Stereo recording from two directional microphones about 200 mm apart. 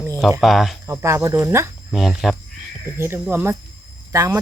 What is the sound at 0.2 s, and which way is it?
Speech, centre (ahead or behind).